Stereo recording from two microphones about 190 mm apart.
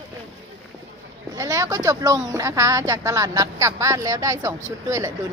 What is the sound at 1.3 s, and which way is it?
Speech, 15° right (ahead or behind).